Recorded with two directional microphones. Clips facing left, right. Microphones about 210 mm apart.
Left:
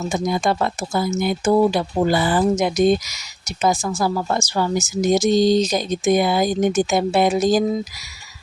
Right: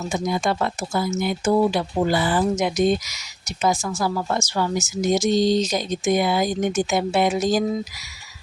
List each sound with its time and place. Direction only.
0.1 s speech: 35° left (ahead or behind)